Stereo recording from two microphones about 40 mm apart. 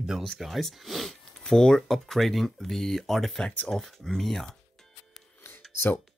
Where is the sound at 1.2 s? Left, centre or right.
Centre.